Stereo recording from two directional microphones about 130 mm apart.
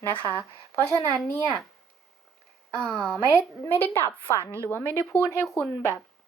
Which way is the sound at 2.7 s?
5° left (ahead or behind).